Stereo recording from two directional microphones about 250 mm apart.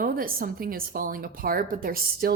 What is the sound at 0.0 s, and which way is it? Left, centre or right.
A woman's voice, right.